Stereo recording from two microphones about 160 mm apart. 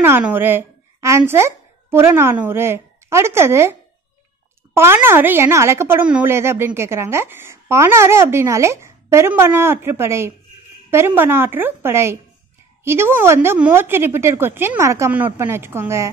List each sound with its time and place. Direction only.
0.0 s a woman's voice: 15° right (ahead or behind)
4.7 s a woman's voice: 15° right (ahead or behind)